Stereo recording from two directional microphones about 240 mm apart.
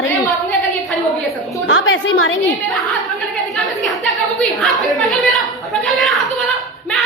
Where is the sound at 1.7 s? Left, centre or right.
Left.